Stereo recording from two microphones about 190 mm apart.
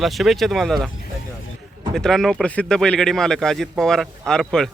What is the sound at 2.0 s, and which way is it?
Speech, centre (ahead or behind).